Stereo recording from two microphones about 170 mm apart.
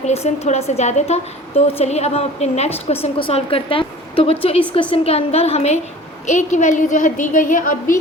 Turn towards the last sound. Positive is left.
turn(degrees=50)  # may be behind; listen again after turning